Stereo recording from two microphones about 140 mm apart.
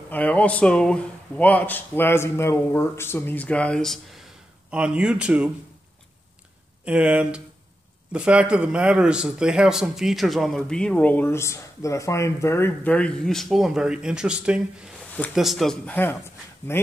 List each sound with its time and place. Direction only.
0.1 s speech: 10° left (ahead or behind)
4.6 s speech: 10° right (ahead or behind)
6.8 s speech: 10° right (ahead or behind); by 16.9 s 20° left (ahead or behind)